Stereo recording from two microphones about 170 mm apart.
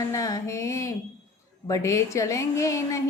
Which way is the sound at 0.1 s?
20° left (ahead or behind).